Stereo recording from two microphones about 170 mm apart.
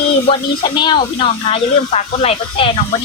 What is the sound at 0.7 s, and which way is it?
Speech, 25° left (ahead or behind).